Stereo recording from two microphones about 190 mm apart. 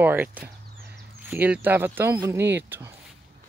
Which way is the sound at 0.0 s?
10° right (ahead or behind).